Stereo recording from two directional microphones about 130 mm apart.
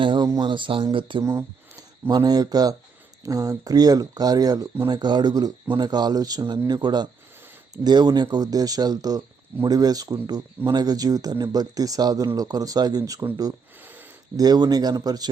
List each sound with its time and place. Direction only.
0.0 s a sound: 35° right (ahead or behind)
0.3 s speech: 35° right (ahead or behind)
1.2 s speech: 20° right (ahead or behind)
14.3 s speech: 30° right (ahead or behind)